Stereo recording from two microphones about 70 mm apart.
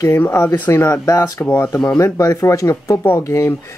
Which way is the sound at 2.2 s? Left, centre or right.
Left.